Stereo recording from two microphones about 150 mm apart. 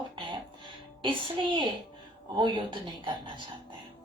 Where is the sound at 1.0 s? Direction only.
35° right (ahead or behind).